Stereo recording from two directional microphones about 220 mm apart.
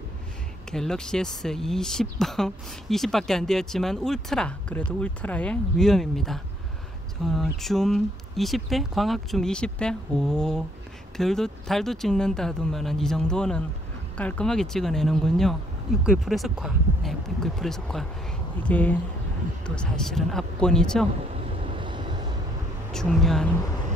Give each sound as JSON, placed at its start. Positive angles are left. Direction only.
{"t": 0.7, "sound": "speech", "side_deg": 5}
{"t": 21.5, "sound": "vehicle", "side_deg": -25}
{"t": 22.9, "sound": "speech", "side_deg": 0}